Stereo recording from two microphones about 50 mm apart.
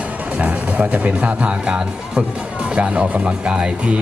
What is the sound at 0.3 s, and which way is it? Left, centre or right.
Speech, right.